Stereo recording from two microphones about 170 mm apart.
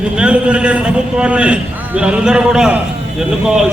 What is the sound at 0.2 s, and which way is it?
A man's voice, 5° right (ahead or behind).